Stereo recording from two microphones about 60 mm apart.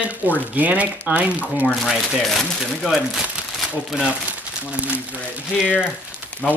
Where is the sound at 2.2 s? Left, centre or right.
Centre.